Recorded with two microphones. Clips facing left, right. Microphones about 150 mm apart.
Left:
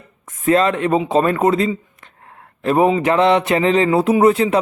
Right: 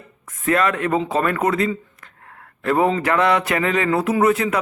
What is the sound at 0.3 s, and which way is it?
Speech, 25° left (ahead or behind).